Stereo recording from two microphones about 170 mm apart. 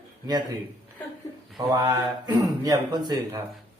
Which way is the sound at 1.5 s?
25° right (ahead or behind).